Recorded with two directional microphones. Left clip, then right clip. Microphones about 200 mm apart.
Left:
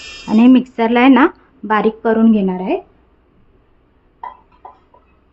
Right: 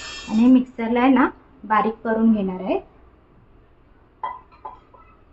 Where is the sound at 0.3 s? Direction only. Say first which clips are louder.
Left 6 dB; 55° left (ahead or behind).